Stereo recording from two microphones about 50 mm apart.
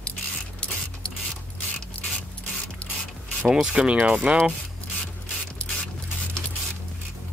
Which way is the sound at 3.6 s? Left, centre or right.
Centre.